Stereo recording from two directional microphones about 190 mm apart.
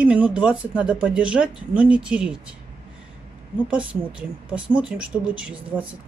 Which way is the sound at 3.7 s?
5° right (ahead or behind).